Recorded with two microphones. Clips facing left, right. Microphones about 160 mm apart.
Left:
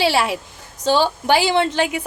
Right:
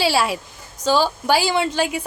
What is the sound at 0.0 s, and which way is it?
A woman's voice, 15° left (ahead or behind).